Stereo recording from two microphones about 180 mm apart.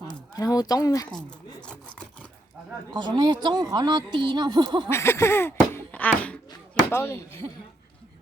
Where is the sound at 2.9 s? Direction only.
25° right (ahead or behind).